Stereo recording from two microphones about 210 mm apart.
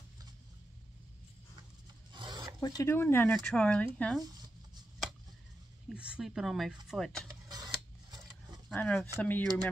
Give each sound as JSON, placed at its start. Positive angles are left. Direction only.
{"t": 2.1, "sound": "filing", "side_deg": -20}
{"t": 2.6, "sound": "speech", "side_deg": 15}
{"t": 5.9, "sound": "speech", "side_deg": -5}
{"t": 7.4, "sound": "a sound", "side_deg": -20}
{"t": 8.7, "sound": "speech", "side_deg": 10}